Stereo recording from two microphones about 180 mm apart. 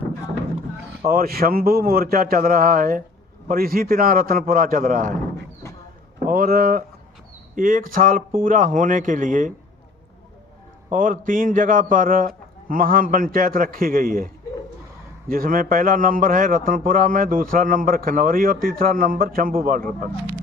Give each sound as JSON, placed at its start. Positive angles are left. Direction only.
{"t": 1.0, "sound": "a man's voice", "side_deg": -55}
{"t": 6.1, "sound": "a man's voice", "side_deg": -50}
{"t": 10.8, "sound": "a man's voice", "side_deg": -50}
{"t": 15.3, "sound": "a man's voice", "side_deg": -50}